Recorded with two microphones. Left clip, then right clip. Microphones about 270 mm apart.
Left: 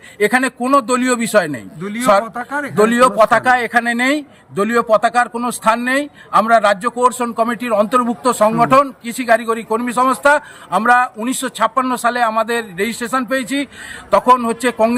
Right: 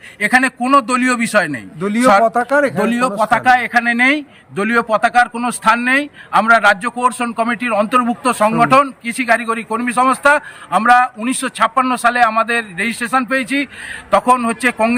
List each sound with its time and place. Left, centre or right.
0.2 s a man's voice: centre
1.8 s speech: centre
2.8 s a man's voice: centre